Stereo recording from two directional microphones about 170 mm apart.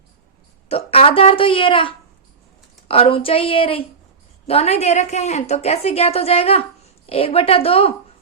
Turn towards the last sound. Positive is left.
turn(degrees=35)  # may be behind; listen again after turning